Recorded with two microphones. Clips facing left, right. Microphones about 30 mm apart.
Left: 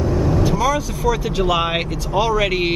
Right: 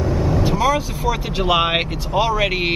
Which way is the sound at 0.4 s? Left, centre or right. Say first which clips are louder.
Even; right.